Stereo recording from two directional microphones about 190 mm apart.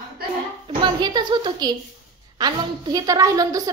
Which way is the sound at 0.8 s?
20° right (ahead or behind).